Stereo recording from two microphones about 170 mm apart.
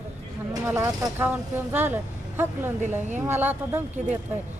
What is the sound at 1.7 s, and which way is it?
Speech, 10° right (ahead or behind).